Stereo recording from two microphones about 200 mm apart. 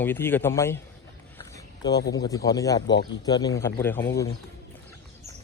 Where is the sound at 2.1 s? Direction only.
20° left (ahead or behind).